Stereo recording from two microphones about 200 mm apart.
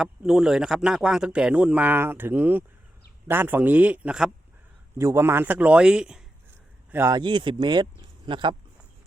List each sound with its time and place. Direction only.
0.0 s a man's voice: 5° right (ahead or behind)
6.9 s speech: 15° right (ahead or behind)